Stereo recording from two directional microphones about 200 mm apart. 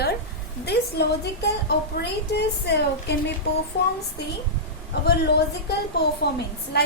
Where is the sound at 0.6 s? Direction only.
55° left (ahead or behind).